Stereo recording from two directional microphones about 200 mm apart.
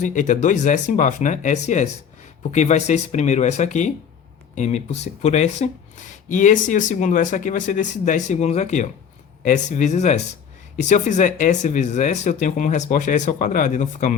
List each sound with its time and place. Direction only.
0.0 s speech: 40° left (ahead or behind)